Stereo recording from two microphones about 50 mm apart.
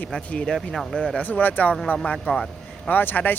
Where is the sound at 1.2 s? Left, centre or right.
Left.